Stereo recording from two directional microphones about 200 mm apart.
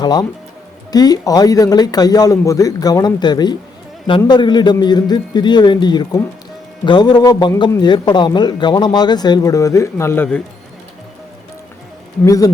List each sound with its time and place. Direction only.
0.0 s a man's voice: 20° left (ahead or behind)
12.2 s speech: 15° left (ahead or behind)